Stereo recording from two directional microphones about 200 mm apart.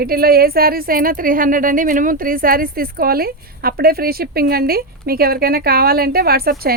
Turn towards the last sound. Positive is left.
turn(degrees=-50)  # may be behind; listen again after turning